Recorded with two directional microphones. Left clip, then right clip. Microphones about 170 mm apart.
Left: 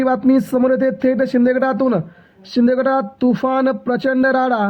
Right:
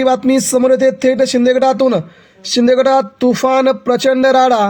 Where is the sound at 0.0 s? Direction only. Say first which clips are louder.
Right 3 dB; 40° right (ahead or behind).